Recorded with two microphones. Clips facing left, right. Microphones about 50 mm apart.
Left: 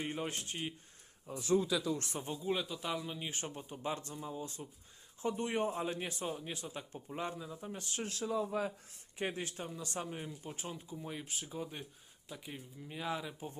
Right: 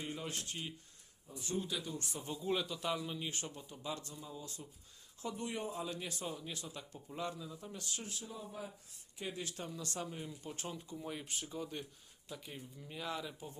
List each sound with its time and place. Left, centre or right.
0.0 s a man's voice: left
1.3 s speech: left
2.4 s speech: centre
3.2 s a man's voice: left
8.0 s speech: left
8.9 s speech: left
9.6 s speech: left
10.2 s speech: centre
11.5 s speech: centre